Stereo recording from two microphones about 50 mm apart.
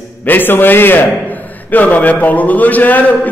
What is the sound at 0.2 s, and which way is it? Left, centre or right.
A man's voice, left.